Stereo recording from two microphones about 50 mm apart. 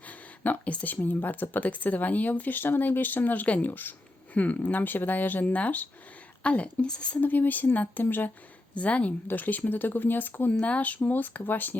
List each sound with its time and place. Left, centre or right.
0.1 s a sound: left
0.7 s speech: left
1.0 s speech: left; by 7.2 s centre
7.2 s speech: left
10.5 s speech: left